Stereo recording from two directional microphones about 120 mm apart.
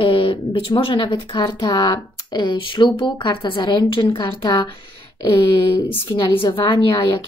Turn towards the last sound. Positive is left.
turn(degrees=40)  # may be behind; listen again after turning